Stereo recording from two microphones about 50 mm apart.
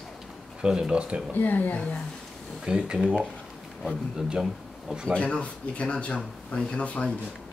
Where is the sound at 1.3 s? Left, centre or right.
Left.